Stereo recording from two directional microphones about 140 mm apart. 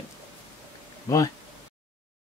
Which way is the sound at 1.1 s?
25° left (ahead or behind).